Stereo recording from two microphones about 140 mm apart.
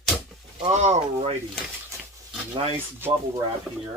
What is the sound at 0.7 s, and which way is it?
Speech, 50° right (ahead or behind).